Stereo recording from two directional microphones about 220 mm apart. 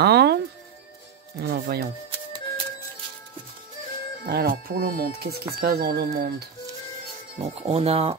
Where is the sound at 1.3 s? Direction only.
45° right (ahead or behind).